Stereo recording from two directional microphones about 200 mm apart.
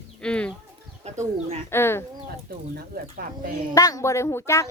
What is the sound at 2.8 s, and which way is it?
Speech, 45° right (ahead or behind).